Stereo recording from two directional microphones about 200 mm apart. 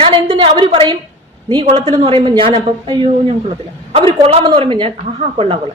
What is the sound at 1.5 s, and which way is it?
A woman's voice, 25° right (ahead or behind).